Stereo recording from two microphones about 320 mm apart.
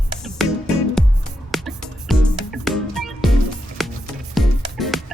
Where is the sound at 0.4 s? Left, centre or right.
Centre.